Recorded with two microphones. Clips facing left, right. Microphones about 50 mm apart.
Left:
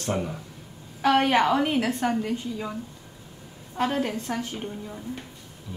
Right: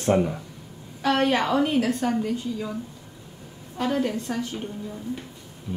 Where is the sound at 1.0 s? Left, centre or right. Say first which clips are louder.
Left 2 dB; left.